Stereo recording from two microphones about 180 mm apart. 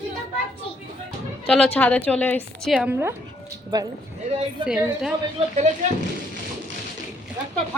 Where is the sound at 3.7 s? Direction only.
20° right (ahead or behind).